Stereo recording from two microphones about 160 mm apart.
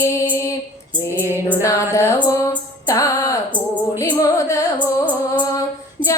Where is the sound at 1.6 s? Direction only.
20° left (ahead or behind).